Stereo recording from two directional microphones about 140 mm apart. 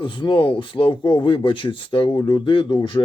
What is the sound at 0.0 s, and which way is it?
Speech, 35° left (ahead or behind).